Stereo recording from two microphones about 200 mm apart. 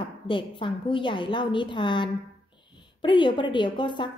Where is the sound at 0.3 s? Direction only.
25° left (ahead or behind).